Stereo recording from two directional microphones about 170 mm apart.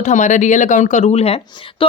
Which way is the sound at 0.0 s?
45° left (ahead or behind).